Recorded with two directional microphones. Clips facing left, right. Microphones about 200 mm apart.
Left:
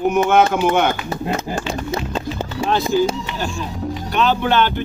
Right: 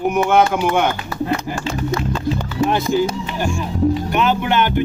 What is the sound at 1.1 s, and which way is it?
Music, 25° left (ahead or behind).